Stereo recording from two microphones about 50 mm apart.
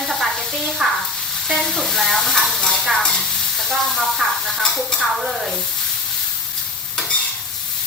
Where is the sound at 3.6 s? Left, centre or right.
Centre.